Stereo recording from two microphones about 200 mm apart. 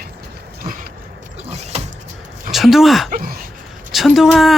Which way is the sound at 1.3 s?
35° right (ahead or behind).